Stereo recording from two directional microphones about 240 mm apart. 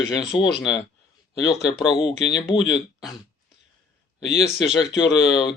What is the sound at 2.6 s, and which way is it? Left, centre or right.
Speech, centre.